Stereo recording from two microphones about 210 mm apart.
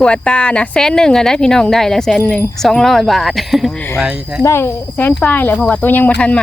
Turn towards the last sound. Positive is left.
turn(degrees=5)  # may be behind; listen again after turning